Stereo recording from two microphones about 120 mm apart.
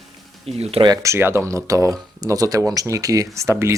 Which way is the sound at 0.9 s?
25° right (ahead or behind).